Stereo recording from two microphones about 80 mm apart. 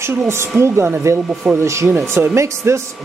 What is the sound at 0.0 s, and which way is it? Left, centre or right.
Speech, right.